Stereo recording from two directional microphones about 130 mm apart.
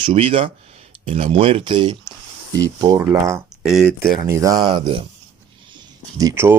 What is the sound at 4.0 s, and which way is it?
Speech, 20° right (ahead or behind).